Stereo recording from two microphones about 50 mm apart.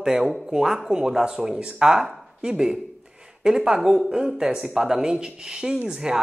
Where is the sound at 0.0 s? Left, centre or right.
Centre.